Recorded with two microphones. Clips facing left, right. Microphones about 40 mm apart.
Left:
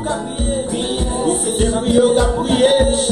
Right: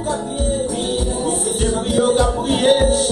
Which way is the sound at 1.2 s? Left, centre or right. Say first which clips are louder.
Left 3 dB; centre.